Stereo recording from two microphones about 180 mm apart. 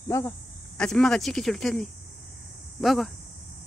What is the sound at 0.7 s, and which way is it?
Speech, 5° left (ahead or behind).